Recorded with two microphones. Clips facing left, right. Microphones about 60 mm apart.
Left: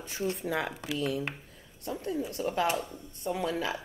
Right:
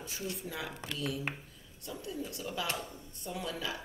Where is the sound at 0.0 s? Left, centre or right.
Left.